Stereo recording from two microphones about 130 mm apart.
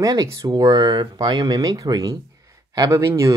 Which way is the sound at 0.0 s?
30° right (ahead or behind).